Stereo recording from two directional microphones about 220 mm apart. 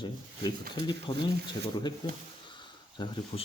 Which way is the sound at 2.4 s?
20° left (ahead or behind).